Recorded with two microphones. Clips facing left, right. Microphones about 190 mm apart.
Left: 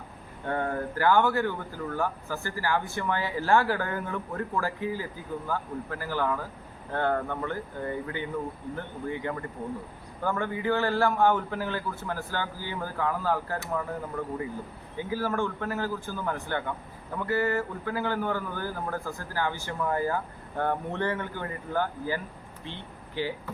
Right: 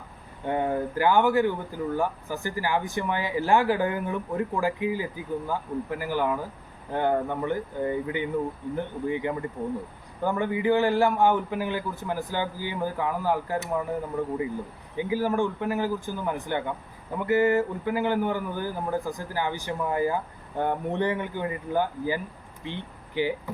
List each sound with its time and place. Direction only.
0.4 s speech: 15° right (ahead or behind)